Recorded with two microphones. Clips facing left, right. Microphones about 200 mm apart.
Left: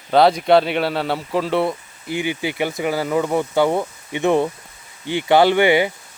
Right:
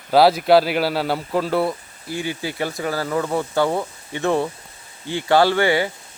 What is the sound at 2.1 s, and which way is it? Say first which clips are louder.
Speech: left 3 dB; 20° left (ahead or behind).